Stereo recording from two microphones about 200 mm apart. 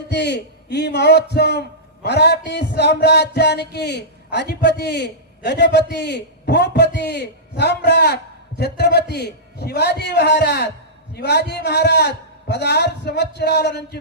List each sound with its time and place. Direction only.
0.1 s a man's voice: 60° left (ahead or behind)